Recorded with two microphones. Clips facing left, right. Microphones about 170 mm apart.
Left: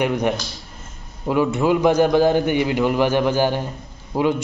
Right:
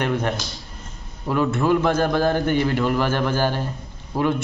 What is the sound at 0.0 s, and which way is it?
Speech, 15° left (ahead or behind).